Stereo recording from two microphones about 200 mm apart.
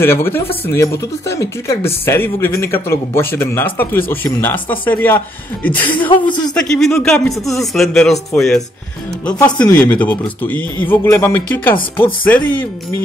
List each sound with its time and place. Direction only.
0.0 s speech: 10° left (ahead or behind)
5.9 s speech: 25° left (ahead or behind)
6.5 s speech: centre (ahead or behind)